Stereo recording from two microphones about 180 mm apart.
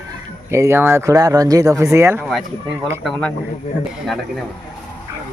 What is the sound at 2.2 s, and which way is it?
Speech, centre (ahead or behind).